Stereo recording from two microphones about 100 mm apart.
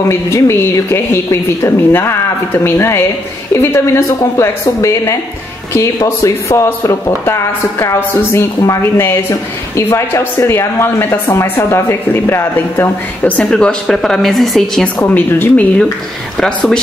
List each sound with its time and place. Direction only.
0.1 s speech: 30° left (ahead or behind)
13.5 s a woman's voice: 5° left (ahead or behind)
15.0 s speech: 20° left (ahead or behind)
16.3 s a woman's voice: 5° left (ahead or behind)